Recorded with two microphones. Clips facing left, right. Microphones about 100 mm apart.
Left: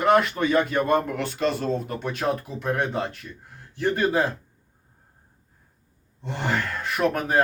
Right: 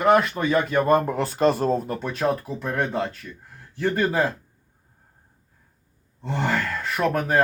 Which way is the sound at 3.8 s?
15° left (ahead or behind).